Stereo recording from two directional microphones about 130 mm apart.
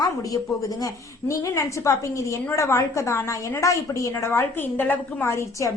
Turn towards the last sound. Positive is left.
turn(degrees=20)  # may be behind; listen again after turning